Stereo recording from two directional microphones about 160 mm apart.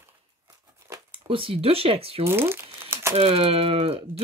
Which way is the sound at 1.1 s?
35° right (ahead or behind).